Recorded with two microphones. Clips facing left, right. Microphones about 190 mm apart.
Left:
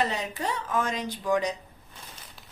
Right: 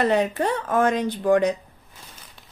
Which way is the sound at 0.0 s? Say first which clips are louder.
Right 9 dB; 55° right (ahead or behind).